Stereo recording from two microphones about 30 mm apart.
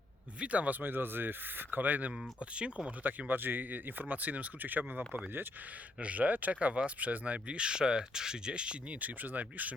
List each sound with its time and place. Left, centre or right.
0.3 s speech: right
0.7 s speech: right
1.7 s speech: right
2.4 s speech: right
3.2 s speech: right
6.0 s speech: right
9.0 s speech: right